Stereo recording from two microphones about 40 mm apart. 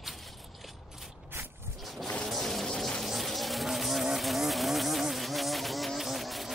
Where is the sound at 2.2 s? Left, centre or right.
Centre.